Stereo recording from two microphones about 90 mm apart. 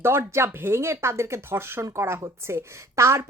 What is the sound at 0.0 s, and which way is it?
Speech, 30° right (ahead or behind).